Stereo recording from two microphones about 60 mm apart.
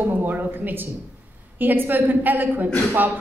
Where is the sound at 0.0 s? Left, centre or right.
Right.